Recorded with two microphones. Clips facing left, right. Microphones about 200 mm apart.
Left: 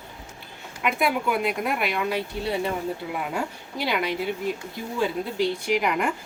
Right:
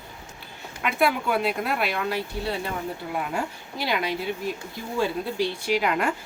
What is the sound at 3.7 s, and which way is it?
Speech, 60° left (ahead or behind).